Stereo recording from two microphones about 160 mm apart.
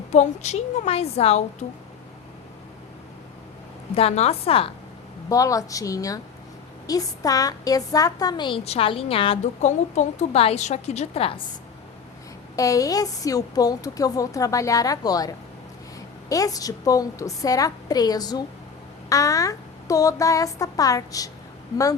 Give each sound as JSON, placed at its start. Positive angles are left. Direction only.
{"t": 0.1, "sound": "a woman's voice", "side_deg": 45}
{"t": 3.9, "sound": "a woman's voice", "side_deg": 40}
{"t": 5.3, "sound": "a woman's voice", "side_deg": 20}
{"t": 12.5, "sound": "a woman's voice", "side_deg": 20}